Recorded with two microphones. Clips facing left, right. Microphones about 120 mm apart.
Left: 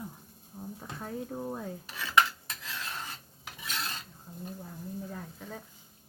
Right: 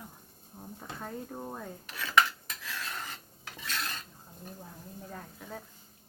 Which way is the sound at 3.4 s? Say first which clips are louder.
Even; 15° left (ahead or behind).